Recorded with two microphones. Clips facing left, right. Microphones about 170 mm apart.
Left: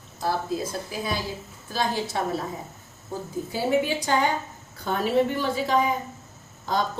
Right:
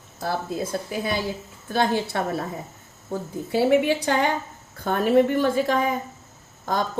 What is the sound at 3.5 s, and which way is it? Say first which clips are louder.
Speech: right 5 dB; 65° right (ahead or behind).